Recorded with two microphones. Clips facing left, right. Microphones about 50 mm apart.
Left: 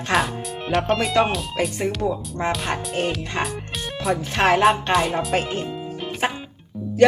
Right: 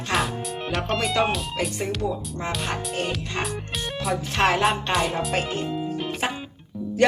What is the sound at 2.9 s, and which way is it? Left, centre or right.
Music, centre.